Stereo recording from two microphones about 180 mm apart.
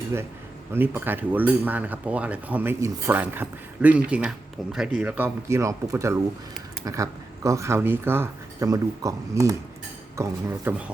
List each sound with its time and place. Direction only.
0.7 s speech: 10° right (ahead or behind)